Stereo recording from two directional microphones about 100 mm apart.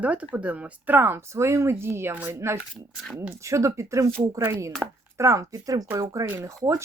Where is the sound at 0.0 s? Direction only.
15° right (ahead or behind).